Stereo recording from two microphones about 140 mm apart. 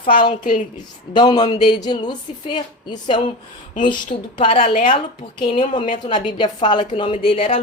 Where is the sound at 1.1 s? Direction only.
35° left (ahead or behind).